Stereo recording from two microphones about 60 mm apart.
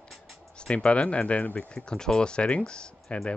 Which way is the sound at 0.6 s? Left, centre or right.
Centre.